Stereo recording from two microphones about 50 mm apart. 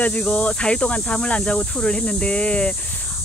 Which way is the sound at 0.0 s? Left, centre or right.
Left.